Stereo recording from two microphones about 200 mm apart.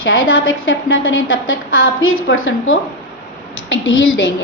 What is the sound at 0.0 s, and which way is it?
A woman's voice, 80° left.